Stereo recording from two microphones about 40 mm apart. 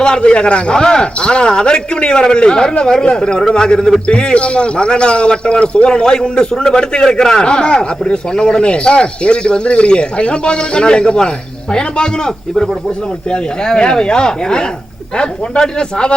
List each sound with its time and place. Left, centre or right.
0.0 s a man's voice: left